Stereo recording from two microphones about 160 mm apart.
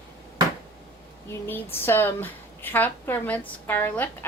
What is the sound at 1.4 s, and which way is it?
A woman's voice, 15° left (ahead or behind).